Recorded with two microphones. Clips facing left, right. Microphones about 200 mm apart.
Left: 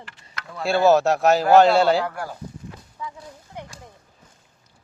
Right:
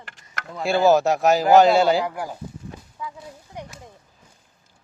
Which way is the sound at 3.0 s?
Centre (ahead or behind).